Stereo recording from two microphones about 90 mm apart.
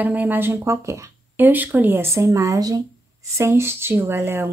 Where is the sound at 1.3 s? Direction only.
20° right (ahead or behind); by 2.8 s 45° right (ahead or behind).